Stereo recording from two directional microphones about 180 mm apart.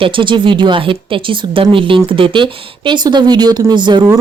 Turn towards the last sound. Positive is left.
turn(degrees=-25)  # may be behind; listen again after turning